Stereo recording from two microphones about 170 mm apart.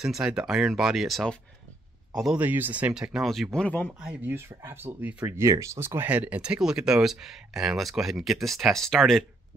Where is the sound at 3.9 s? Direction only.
5° right (ahead or behind).